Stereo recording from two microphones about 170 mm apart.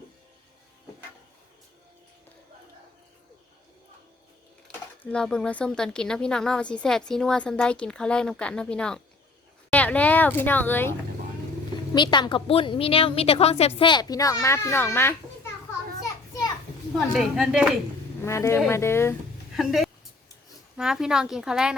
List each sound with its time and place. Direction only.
5.0 s a woman's voice: 5° left (ahead or behind)
11.9 s a woman's voice: 25° left (ahead or behind)
16.9 s a woman's voice: centre (ahead or behind)
18.2 s speech: 15° left (ahead or behind)
19.5 s a woman's voice: centre (ahead or behind)